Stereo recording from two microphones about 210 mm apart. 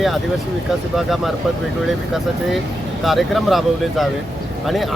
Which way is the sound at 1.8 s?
Centre (ahead or behind).